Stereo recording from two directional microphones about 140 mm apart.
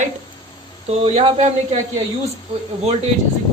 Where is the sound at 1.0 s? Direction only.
50° right (ahead or behind).